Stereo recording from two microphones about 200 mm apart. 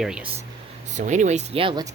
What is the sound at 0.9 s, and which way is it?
Speech, 35° right (ahead or behind).